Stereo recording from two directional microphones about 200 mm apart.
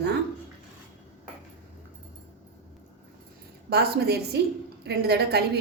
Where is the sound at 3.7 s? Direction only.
55° right (ahead or behind).